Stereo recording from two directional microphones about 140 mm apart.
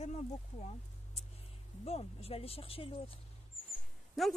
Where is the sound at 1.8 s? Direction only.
45° left (ahead or behind).